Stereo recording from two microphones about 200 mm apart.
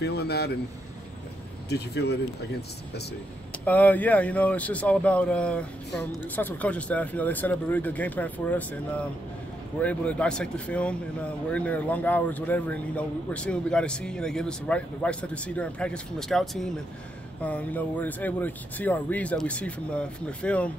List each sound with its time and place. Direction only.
0.0 s speech: 55° left (ahead or behind)
1.7 s speech: 55° left (ahead or behind)
3.6 s speech: 10° left (ahead or behind)